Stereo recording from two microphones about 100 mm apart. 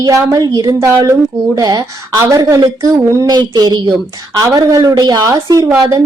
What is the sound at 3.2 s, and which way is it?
Speech, 45° right (ahead or behind).